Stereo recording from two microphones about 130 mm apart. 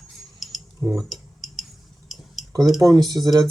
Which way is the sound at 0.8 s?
25° right (ahead or behind).